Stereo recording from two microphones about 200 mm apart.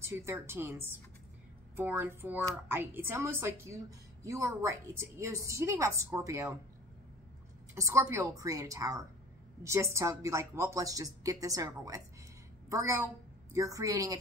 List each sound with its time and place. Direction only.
0.0 s a woman's voice: 15° right (ahead or behind)
7.7 s a woman's voice: 15° right (ahead or behind)